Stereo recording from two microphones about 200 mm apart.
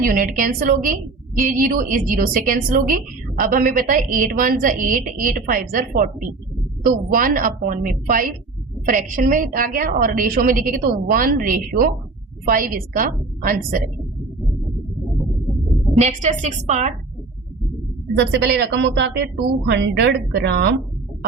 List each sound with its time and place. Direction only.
0.0 s a woman's voice: 45° right (ahead or behind)
16.0 s a woman's voice: 35° right (ahead or behind)
18.2 s a woman's voice: 55° right (ahead or behind)